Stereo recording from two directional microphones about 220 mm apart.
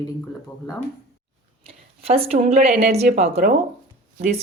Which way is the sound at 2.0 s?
25° right (ahead or behind).